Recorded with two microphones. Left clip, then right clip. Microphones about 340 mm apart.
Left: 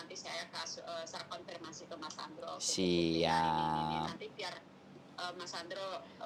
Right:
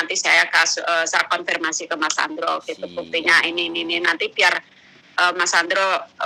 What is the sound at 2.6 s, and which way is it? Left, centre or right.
Speech, left.